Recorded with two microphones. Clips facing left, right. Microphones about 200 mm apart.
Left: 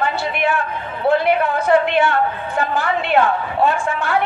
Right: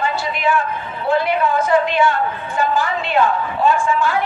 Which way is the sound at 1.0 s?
60° left (ahead or behind).